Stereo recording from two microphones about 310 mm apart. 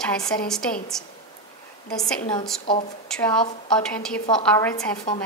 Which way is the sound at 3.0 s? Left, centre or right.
Centre.